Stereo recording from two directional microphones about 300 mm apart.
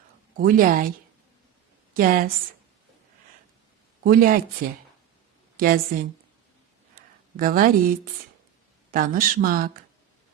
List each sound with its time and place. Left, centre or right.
0.3 s speech: right
1.9 s a woman's voice: right
4.0 s speech: right
6.9 s a sound: right
8.9 s speech: right